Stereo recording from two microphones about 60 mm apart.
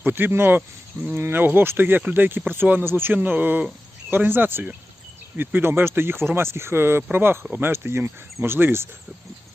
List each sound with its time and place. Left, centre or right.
0.0 s speech: right